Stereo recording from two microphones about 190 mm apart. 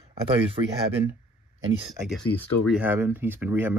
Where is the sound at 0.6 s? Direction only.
25° right (ahead or behind).